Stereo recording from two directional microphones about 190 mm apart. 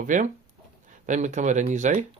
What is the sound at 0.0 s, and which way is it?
Speech, 45° right (ahead or behind).